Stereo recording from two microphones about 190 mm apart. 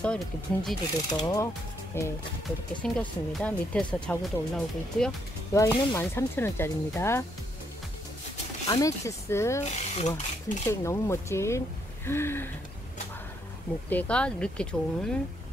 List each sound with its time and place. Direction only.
0.0 s speech: 5° left (ahead or behind)
1.1 s ratchet: 20° left (ahead or behind)
1.9 s speech: 15° left (ahead or behind)
5.5 s speech: 15° left (ahead or behind)
8.6 s speech: 20° left (ahead or behind)
9.6 s speech: 35° left (ahead or behind)
10.7 s speech: 15° left (ahead or behind)
13.8 s speech: 5° left (ahead or behind)